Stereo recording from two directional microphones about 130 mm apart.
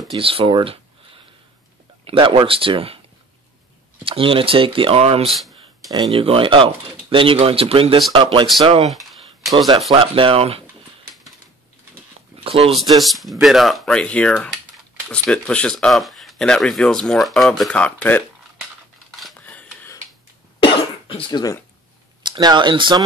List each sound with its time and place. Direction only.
0.1 s speech: 45° right (ahead or behind)
4.0 s speech: 45° right (ahead or behind)
5.9 s speech: 40° right (ahead or behind)
8.8 s a sound: centre (ahead or behind)
9.8 s speech: 45° right (ahead or behind)
12.4 s speech: 50° right (ahead or behind)
12.7 s speech: centre (ahead or behind)
19.4 s a sound: 10° left (ahead or behind)
20.6 s cough: 40° left (ahead or behind)
22.2 s speech: 35° right (ahead or behind)